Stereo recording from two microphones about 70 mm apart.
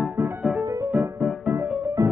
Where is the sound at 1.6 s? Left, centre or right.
Right.